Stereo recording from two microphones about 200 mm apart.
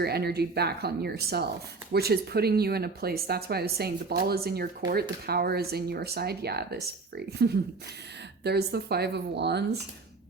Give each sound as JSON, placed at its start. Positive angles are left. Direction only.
{"t": 0.0, "sound": "a woman's voice", "side_deg": -50}